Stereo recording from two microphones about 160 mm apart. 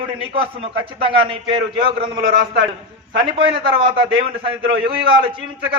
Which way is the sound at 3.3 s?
30° right (ahead or behind).